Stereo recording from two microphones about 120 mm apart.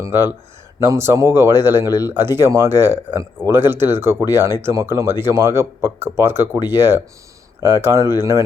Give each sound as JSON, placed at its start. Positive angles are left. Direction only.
{"t": 0.0, "sound": "speech", "side_deg": -20}